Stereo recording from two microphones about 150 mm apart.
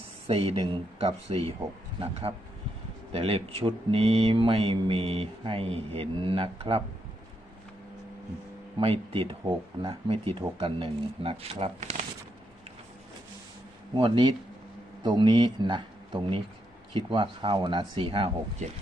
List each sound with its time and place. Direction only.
0.3 s speech: 40° right (ahead or behind)
8.8 s speech: 40° right (ahead or behind)
13.9 s speech: 30° right (ahead or behind)